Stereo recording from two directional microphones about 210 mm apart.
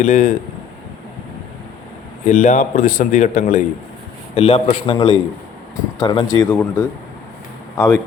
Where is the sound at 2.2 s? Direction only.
35° left (ahead or behind).